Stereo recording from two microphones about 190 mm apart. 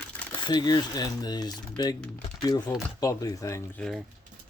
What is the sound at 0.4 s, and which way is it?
Speech, 20° left (ahead or behind).